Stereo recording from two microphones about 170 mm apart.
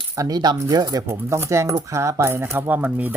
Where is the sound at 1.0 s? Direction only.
15° right (ahead or behind).